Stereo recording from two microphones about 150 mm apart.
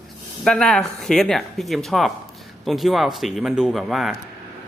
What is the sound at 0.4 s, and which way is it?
Speech, 5° left (ahead or behind).